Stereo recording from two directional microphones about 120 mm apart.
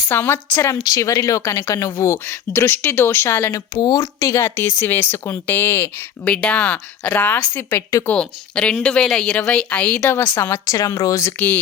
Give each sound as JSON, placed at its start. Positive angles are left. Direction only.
{"t": 0.1, "sound": "speech", "side_deg": 15}
{"t": 3.8, "sound": "speech", "side_deg": 30}
{"t": 8.0, "sound": "speech", "side_deg": 10}
{"t": 10.0, "sound": "speech", "side_deg": 25}